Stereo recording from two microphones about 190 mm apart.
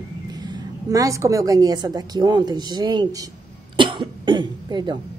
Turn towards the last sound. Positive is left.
turn(degrees=-20)  # may be behind; listen again after turning